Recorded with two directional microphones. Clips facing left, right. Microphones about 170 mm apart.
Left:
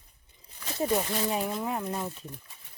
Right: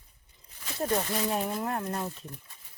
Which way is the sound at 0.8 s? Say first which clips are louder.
Left 1 dB; 5° left (ahead or behind).